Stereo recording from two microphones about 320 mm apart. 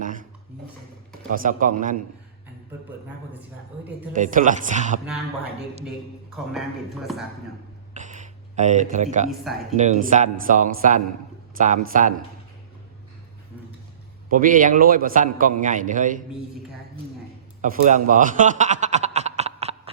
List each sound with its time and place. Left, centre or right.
0.0 s a sound: right
1.3 s a man's voice: right
4.1 s a man's voice: right
6.3 s speech: centre
7.9 s a sound: right
9.3 s speech: centre
9.7 s a man's voice: right
14.3 s a man's voice: right
17.6 s chuckle: right